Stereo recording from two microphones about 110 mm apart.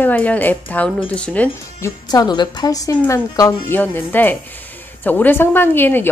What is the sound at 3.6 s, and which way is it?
A woman's voice, 20° left (ahead or behind).